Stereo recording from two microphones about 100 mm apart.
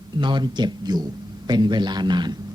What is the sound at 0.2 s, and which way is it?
Speech, 50° right (ahead or behind).